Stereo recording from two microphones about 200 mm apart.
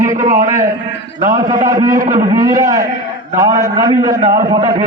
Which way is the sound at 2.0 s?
40° right (ahead or behind).